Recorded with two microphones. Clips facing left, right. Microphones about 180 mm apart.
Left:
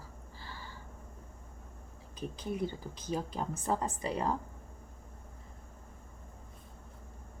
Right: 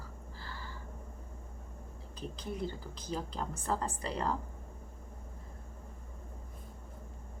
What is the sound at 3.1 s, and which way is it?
Speech, 15° left (ahead or behind).